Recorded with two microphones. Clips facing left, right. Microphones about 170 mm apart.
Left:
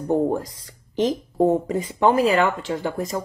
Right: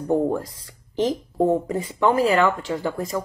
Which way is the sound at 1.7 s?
20° left (ahead or behind).